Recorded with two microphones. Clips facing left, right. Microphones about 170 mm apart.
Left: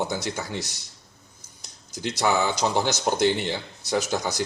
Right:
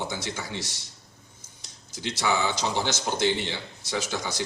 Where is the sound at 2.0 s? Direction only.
45° left (ahead or behind).